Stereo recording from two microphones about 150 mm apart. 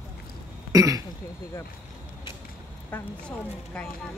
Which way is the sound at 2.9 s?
10° left (ahead or behind).